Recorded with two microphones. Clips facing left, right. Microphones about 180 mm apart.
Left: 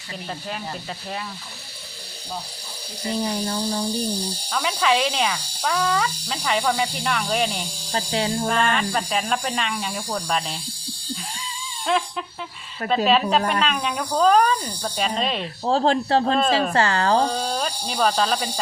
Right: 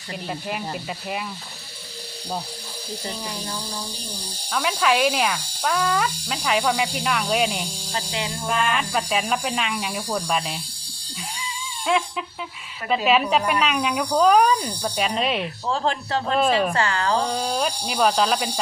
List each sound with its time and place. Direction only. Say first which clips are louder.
4.5 s speech: even; 5° right (ahead or behind)
7.9 s speech: left 5 dB; 40° left (ahead or behind)
8.4 s speech: left 2 dB; 5° right (ahead or behind)
11.9 s speech: even; 5° right (ahead or behind)
15.6 s speech: left 8 dB; 35° left (ahead or behind)
16.3 s speech: even; 10° right (ahead or behind)
16.7 s speech: left 3 dB; 35° left (ahead or behind)
17.3 s speech: right 1 dB; 5° right (ahead or behind)